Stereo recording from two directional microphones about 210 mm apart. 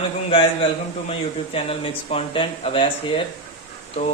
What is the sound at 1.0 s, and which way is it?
Speech, 25° left (ahead or behind).